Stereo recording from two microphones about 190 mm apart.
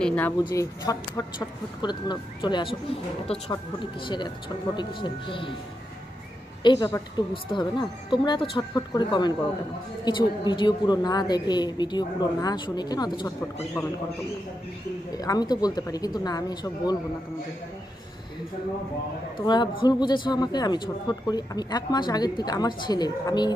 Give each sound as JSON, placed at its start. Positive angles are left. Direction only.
{"t": 0.0, "sound": "speech", "side_deg": 5}
{"t": 0.4, "sound": "speech", "side_deg": 20}
{"t": 6.6, "sound": "speech", "side_deg": 20}
{"t": 15.1, "sound": "speech", "side_deg": 20}
{"t": 19.3, "sound": "speech", "side_deg": 25}